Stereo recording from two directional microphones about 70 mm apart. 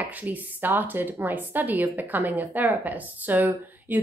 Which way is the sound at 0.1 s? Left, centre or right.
Right.